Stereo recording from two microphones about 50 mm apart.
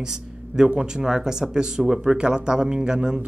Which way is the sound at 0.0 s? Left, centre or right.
Centre.